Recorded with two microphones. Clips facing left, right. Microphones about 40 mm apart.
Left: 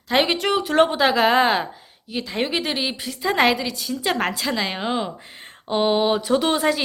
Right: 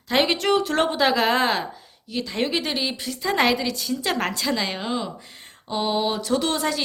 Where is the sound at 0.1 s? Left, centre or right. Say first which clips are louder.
Left 1 dB; centre.